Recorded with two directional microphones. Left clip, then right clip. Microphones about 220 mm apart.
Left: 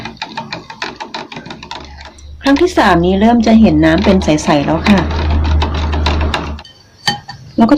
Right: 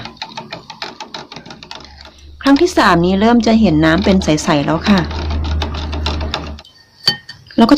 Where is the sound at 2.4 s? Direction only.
20° right (ahead or behind).